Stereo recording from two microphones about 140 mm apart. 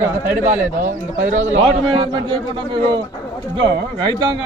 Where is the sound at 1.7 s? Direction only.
35° right (ahead or behind).